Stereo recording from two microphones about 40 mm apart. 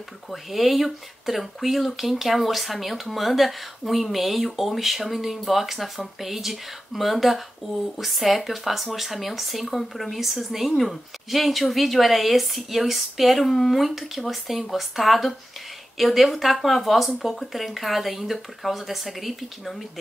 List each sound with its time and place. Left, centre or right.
0.3 s speech: centre